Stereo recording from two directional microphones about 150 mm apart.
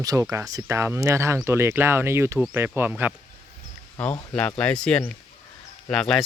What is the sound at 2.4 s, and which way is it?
Speech, 5° right (ahead or behind).